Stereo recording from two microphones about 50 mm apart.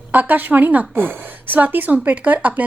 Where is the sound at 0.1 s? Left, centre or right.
Right.